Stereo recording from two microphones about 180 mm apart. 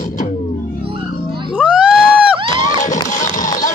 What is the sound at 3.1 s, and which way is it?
Music, 45° left (ahead or behind).